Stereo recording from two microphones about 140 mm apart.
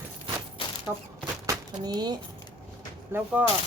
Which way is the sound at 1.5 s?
30° right (ahead or behind).